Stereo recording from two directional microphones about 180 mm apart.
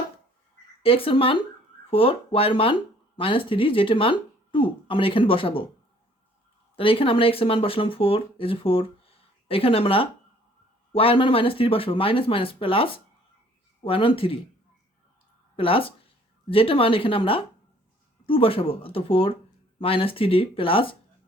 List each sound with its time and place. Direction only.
0.8 s a woman's voice: 30° left (ahead or behind)
6.7 s speech: 30° left (ahead or behind)
15.5 s a woman's voice: 30° left (ahead or behind)